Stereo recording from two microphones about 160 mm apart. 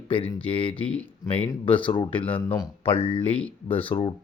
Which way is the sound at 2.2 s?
10° left (ahead or behind).